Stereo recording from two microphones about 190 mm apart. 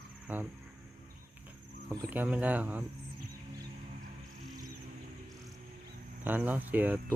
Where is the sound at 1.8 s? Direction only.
15° right (ahead or behind).